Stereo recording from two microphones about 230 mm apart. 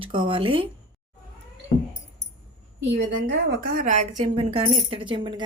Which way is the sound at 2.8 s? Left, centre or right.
Right.